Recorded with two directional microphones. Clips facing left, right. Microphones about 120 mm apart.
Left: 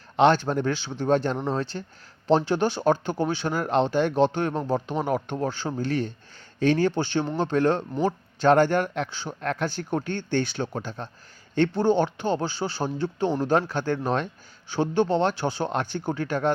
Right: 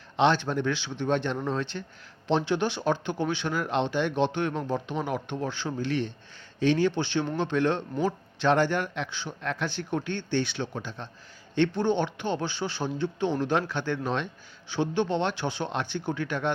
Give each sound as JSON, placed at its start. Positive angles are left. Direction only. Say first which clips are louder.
{"t": 0.2, "sound": "speech", "louder": "left 4 dB", "side_deg": 45}